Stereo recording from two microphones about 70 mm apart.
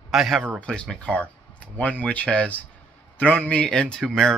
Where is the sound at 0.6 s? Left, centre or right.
Centre.